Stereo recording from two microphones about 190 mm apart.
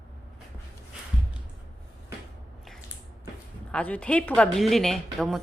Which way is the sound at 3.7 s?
5° left (ahead or behind).